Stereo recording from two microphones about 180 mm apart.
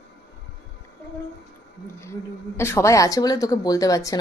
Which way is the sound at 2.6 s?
15° left (ahead or behind).